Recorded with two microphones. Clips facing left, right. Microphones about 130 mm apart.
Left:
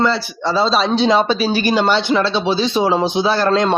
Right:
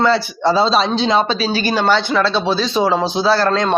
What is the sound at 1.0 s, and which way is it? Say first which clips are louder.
Speech: left 2 dB; 15° left (ahead or behind).